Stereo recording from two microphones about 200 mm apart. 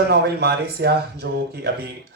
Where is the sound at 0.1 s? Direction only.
55° right (ahead or behind).